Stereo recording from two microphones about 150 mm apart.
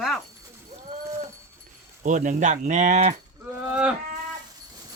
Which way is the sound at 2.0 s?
55° right (ahead or behind).